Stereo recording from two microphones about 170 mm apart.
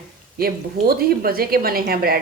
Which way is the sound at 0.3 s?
60° right (ahead or behind).